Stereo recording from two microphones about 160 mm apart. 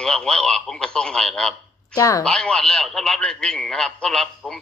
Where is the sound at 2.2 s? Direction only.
5° left (ahead or behind).